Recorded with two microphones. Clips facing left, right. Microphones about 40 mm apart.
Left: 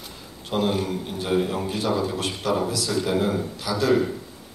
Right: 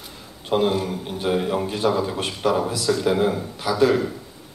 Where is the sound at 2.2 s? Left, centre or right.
Right.